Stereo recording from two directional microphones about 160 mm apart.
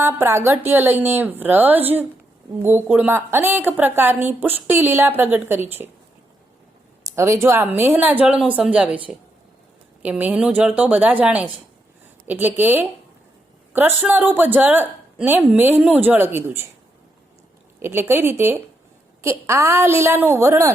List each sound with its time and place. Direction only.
0.0 s a woman's voice: 15° right (ahead or behind)
7.2 s a woman's voice: 15° right (ahead or behind)
10.0 s a woman's voice: 10° right (ahead or behind)
17.7 s a woman's voice: 15° right (ahead or behind)